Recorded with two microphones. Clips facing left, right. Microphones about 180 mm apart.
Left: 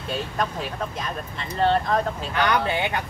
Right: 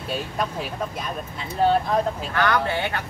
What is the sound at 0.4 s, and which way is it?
Speech, 5° right (ahead or behind).